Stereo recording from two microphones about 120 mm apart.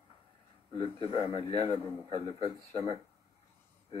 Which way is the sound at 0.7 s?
50° left (ahead or behind).